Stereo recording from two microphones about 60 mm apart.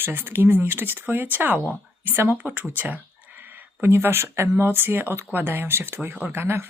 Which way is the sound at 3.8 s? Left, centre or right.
Right.